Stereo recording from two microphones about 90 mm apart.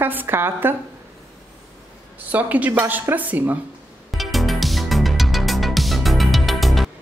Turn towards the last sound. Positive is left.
turn(degrees=0)  # may be behind; listen again after turning